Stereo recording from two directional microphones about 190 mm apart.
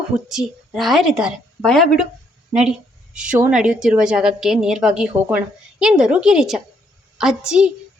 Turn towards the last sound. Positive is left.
turn(degrees=-5)  # may be behind; listen again after turning